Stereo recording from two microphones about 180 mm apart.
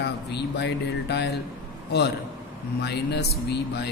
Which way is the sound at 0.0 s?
70° left (ahead or behind).